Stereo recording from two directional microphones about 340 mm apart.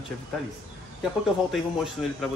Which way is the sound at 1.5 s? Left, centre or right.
Centre.